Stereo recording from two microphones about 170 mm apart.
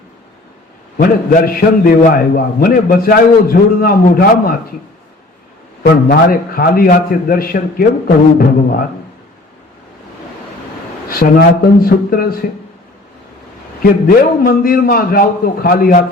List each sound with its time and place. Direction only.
0.9 s a man's voice: 60° left (ahead or behind)
5.8 s a man's voice: 60° left (ahead or behind)
11.1 s a man's voice: 60° left (ahead or behind)
14.2 s a man's voice: 60° left (ahead or behind)